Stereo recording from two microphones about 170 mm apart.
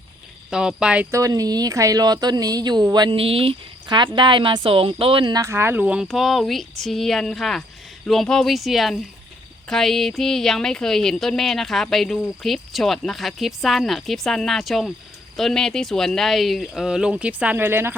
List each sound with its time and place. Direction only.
0.5 s speech: 5° right (ahead or behind)
1.1 s speech: 20° right (ahead or behind)